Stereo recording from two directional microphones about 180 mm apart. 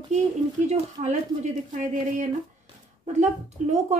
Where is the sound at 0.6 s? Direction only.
40° right (ahead or behind).